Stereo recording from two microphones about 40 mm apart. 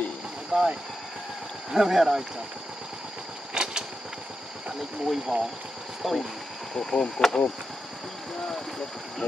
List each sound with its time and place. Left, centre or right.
0.5 s speech: centre
3.5 s vehicle: centre
5.0 s speech: centre
6.7 s speech: centre